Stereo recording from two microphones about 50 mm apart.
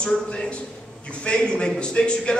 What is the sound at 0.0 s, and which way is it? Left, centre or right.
A man's voice, left.